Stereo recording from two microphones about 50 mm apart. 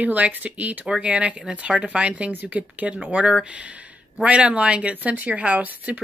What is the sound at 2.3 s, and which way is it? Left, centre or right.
Speech, right.